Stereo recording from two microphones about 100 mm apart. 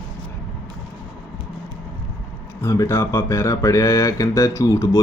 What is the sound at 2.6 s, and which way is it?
Speech, 30° left (ahead or behind).